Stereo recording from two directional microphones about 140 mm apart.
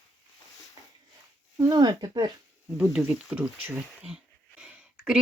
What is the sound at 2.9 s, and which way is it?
Speech, 5° right (ahead or behind).